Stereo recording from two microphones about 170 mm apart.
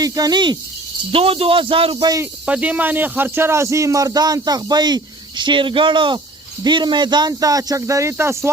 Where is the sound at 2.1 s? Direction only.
10° right (ahead or behind).